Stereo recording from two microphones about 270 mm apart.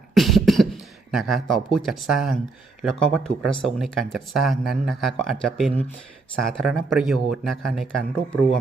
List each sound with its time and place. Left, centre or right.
0.1 s beatboxing: centre
2.8 s speech: centre